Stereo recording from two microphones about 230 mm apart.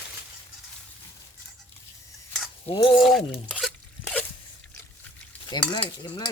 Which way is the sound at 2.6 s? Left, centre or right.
Left.